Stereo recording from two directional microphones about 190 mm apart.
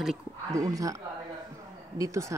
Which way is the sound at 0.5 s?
15° right (ahead or behind).